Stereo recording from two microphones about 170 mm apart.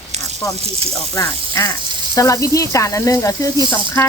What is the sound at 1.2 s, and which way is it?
Speech, 15° left (ahead or behind).